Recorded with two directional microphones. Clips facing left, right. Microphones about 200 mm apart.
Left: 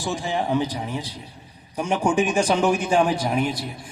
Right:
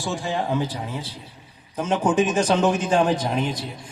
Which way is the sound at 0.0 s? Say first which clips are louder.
Left 1 dB; 15° left (ahead or behind).